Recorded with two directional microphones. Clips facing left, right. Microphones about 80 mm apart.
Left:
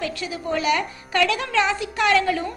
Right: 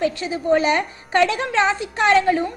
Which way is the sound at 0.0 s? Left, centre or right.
Right.